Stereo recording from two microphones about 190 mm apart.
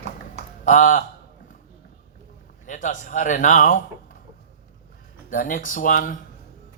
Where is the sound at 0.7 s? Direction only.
45° left (ahead or behind).